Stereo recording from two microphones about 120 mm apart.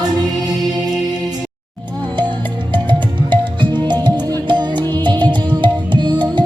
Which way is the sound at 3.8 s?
40° right (ahead or behind).